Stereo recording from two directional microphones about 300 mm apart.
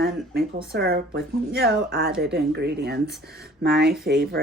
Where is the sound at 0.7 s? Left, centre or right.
Right.